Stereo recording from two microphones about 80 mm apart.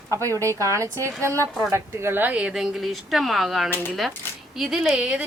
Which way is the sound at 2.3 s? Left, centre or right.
Centre.